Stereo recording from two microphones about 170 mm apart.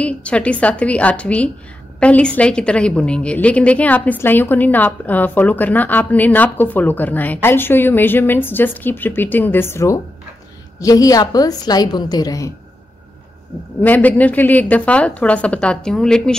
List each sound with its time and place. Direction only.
0.0 s a woman's voice: 5° left (ahead or behind)
13.7 s a woman's voice: 10° left (ahead or behind)